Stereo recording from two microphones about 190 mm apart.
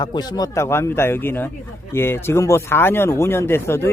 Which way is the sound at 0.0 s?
20° left (ahead or behind).